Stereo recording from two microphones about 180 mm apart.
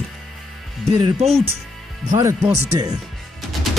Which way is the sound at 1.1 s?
35° right (ahead or behind).